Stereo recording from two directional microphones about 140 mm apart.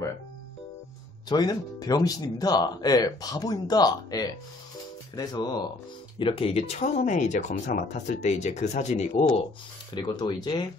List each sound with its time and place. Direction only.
1.3 s speech: 30° left (ahead or behind); by 9.1 s 55° left (ahead or behind)
9.9 s speech: 30° left (ahead or behind)